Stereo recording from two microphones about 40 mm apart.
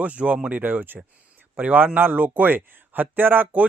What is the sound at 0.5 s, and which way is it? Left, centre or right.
Speech, right.